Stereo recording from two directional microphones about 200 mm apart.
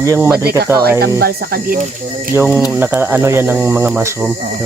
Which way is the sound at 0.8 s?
50° right (ahead or behind).